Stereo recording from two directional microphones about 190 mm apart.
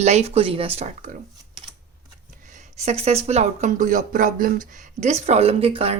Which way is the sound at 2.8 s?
35° right (ahead or behind).